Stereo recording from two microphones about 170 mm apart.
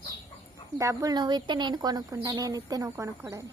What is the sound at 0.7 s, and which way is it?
Speech, 20° right (ahead or behind).